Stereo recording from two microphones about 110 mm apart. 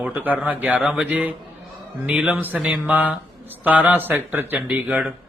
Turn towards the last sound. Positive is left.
turn(degrees=-15)  # may be behind; listen again after turning